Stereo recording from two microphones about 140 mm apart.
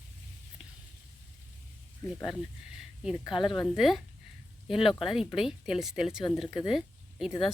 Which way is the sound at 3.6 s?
5° right (ahead or behind).